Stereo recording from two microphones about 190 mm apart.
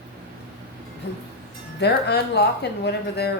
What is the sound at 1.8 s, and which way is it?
Speech, 60° left (ahead or behind).